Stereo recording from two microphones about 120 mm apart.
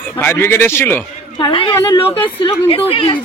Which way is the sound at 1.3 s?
45° left (ahead or behind).